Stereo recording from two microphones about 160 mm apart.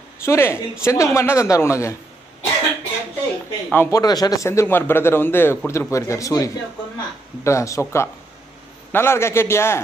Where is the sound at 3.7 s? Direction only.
20° left (ahead or behind).